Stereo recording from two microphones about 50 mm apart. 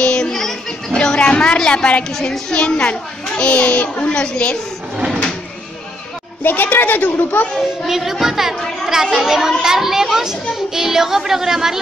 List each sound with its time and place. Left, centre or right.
0.0 s child singing: left
0.3 s a sound: centre
2.0 s speech: centre
2.5 s a child's voice: centre
6.4 s a woman's voice: left
7.5 s a child's voice: centre